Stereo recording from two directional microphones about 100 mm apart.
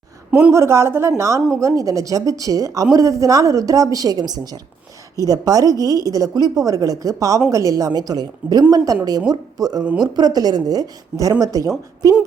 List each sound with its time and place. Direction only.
0.3 s speech: 15° right (ahead or behind)
0.5 s a woman's voice: 30° right (ahead or behind)